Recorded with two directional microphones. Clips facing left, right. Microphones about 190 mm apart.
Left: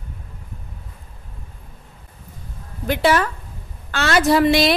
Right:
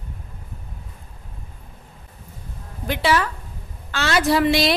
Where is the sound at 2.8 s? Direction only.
50° left (ahead or behind).